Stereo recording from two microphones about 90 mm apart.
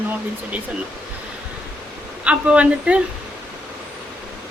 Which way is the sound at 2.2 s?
15° right (ahead or behind).